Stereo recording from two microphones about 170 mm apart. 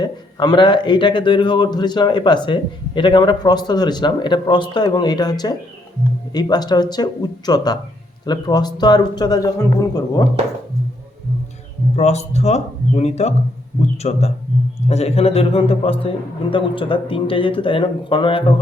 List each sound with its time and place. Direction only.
0.0 s speech: 25° left (ahead or behind)
11.9 s speech: 40° left (ahead or behind)